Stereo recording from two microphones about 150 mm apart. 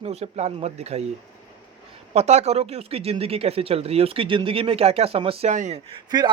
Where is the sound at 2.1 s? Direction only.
45° right (ahead or behind).